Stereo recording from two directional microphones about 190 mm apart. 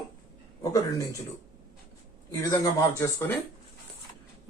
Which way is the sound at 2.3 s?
15° left (ahead or behind).